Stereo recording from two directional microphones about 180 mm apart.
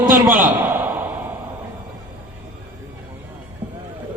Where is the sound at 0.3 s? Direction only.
50° right (ahead or behind).